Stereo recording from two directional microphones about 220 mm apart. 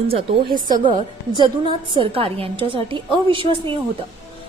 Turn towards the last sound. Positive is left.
turn(degrees=-25)  # may be behind; listen again after turning